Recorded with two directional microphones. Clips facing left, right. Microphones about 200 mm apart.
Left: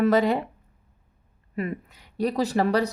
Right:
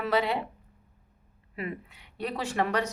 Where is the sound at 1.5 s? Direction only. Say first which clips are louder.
Left 6 dB; 45° left (ahead or behind).